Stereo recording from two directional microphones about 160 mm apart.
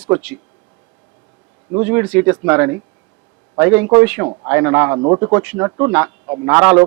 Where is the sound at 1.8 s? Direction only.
15° right (ahead or behind).